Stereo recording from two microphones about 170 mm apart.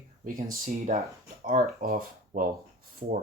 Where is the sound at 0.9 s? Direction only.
50° right (ahead or behind).